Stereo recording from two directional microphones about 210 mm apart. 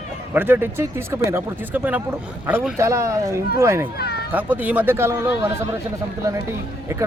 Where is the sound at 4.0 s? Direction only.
50° left (ahead or behind).